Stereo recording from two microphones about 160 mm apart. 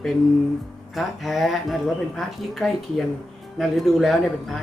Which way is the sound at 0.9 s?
Centre (ahead or behind).